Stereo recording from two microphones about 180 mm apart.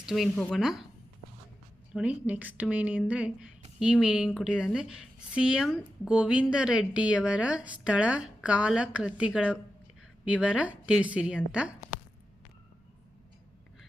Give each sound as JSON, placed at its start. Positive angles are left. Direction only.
{"t": 0.0, "sound": "a woman's voice", "side_deg": 0}
{"t": 1.9, "sound": "a woman's voice", "side_deg": -5}